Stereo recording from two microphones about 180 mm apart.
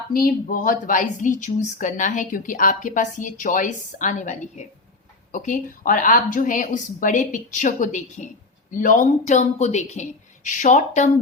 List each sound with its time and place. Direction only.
0.1 s speech: 55° left (ahead or behind)